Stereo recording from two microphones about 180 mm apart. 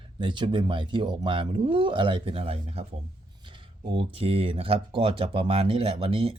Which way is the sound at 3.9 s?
30° right (ahead or behind).